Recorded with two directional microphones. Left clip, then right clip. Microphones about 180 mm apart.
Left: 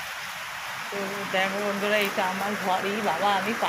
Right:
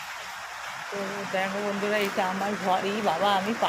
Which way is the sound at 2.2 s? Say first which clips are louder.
Left 1 dB; 15° right (ahead or behind).